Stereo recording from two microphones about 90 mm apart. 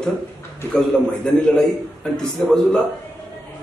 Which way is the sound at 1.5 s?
5° left (ahead or behind).